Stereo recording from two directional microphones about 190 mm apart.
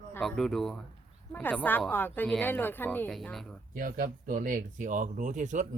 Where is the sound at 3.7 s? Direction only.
45° right (ahead or behind).